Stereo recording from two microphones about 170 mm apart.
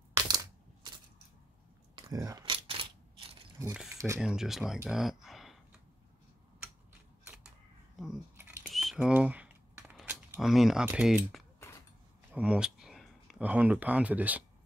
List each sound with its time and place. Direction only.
0.1 s coin: 20° right (ahead or behind)
2.0 s biting: 20° right (ahead or behind)
4.2 s speech: 5° right (ahead or behind)
4.8 s a sound: centre (ahead or behind)
7.9 s a sound: 5° right (ahead or behind)
12.3 s speech: 5° right (ahead or behind)